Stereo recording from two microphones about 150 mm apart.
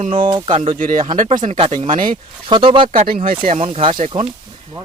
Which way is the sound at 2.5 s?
35° right (ahead or behind).